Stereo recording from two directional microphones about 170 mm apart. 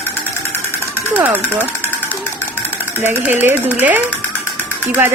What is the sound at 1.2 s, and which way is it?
Speech, 10° right (ahead or behind).